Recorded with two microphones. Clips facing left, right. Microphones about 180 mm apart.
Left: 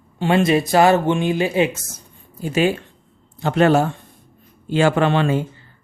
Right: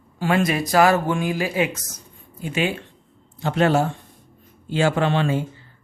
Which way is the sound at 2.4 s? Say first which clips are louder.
Left 5 dB; 40° left (ahead or behind).